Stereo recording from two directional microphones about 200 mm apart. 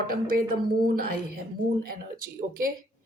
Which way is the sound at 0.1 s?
45° right (ahead or behind).